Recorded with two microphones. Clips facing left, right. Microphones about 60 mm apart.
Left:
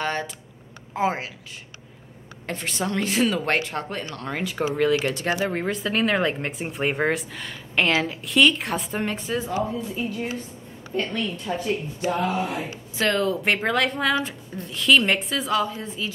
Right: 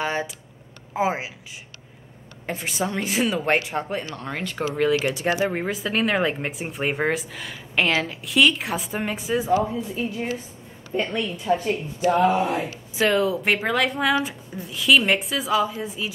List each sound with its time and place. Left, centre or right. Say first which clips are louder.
0.0 s a sound: right 1 dB; centre
0.9 s speech: right 1 dB; centre
2.4 s speech: right 1 dB; centre
4.1 s speech: left 1 dB; centre
5.0 s speech: right 2 dB; centre